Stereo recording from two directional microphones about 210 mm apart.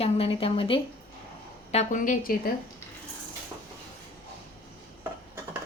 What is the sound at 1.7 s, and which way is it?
Speech, 40° left (ahead or behind).